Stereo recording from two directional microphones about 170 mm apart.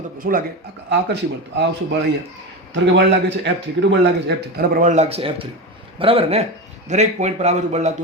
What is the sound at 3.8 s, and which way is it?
Speech, 90° right.